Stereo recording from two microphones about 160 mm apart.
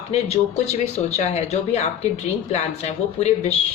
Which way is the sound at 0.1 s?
40° left (ahead or behind).